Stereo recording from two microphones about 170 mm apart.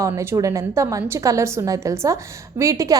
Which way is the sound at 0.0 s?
15° right (ahead or behind).